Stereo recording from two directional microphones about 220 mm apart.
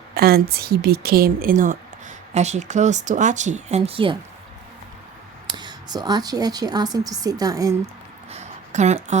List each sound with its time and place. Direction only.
0.1 s speech: 45° right (ahead or behind); by 4.2 s 25° right (ahead or behind)
5.5 s a woman's voice: 20° right (ahead or behind)
8.3 s a sound: 30° right (ahead or behind)